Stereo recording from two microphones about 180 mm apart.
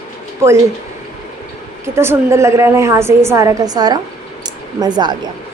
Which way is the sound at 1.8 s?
15° right (ahead or behind).